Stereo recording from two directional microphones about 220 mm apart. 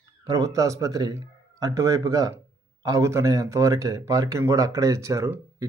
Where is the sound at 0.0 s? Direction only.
15° right (ahead or behind).